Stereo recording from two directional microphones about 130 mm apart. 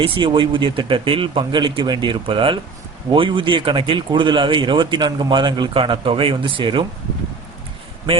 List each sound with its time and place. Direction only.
0.0 s speech: 40° right (ahead or behind)